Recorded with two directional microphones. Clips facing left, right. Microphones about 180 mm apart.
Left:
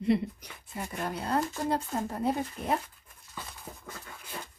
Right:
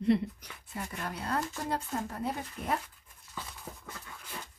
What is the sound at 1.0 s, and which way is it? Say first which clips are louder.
Speech: left 5 dB; 25° left (ahead or behind).